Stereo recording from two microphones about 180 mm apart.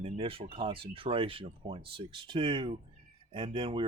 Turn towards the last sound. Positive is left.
turn(degrees=-30)  # may be behind; listen again after turning